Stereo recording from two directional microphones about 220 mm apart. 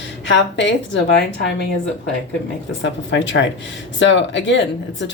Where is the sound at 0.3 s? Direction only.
55° left (ahead or behind).